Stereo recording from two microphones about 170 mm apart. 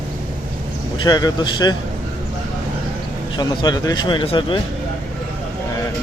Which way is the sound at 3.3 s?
25° left (ahead or behind).